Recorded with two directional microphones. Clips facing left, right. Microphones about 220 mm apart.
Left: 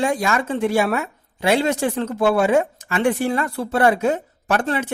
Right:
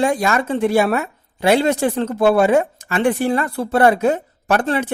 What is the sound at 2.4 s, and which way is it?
Speech, 35° right (ahead or behind).